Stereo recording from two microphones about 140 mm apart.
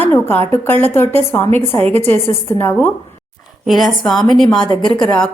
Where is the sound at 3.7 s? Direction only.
Centre (ahead or behind).